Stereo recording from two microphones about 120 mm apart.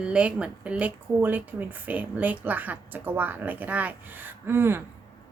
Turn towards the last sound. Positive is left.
turn(degrees=-20)  # may be behind; listen again after turning